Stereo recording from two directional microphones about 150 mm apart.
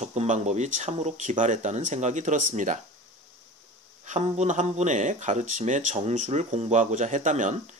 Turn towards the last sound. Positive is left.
turn(degrees=-55)  # may be behind; listen again after turning